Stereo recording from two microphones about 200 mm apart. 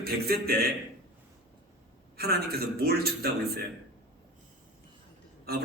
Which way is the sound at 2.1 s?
50° right (ahead or behind).